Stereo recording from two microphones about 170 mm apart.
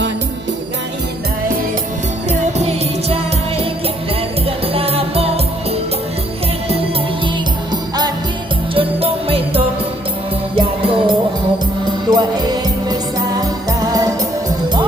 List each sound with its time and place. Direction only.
2.4 s music: 40° right (ahead or behind)
4.4 s music: 35° right (ahead or behind)
7.7 s music: 25° right (ahead or behind)